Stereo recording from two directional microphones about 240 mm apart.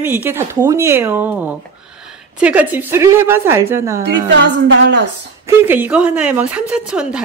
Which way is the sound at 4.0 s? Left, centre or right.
Right.